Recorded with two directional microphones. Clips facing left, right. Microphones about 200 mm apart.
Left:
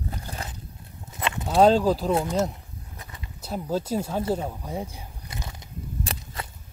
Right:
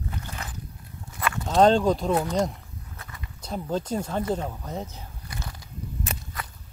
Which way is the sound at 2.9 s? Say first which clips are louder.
Even; 20° left (ahead or behind).